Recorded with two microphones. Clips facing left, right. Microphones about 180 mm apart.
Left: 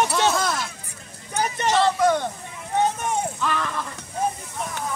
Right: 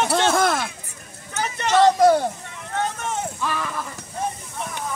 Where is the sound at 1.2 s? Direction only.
15° left (ahead or behind).